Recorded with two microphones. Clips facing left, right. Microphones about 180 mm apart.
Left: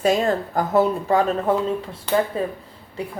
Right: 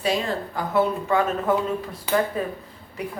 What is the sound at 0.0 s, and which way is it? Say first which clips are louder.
Speech: left 5 dB; 45° left (ahead or behind).